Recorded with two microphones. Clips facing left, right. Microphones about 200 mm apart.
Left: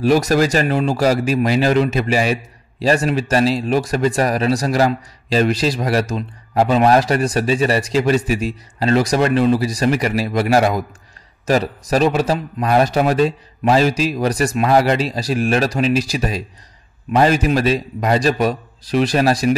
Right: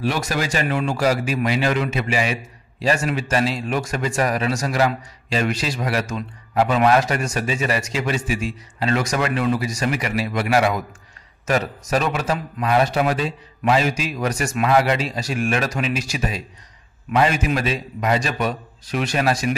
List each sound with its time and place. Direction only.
0.0 s speech: 40° left (ahead or behind)